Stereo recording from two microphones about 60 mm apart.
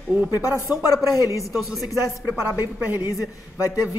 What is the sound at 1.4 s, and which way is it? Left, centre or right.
Speech, centre.